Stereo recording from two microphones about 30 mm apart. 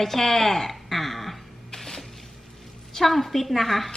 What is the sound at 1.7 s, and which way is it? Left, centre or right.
Music, centre.